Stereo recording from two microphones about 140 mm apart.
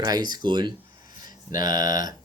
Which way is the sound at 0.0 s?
30° right (ahead or behind).